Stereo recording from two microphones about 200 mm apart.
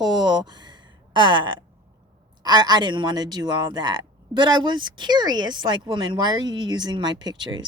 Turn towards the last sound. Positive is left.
turn(degrees=-20)  # may be behind; listen again after turning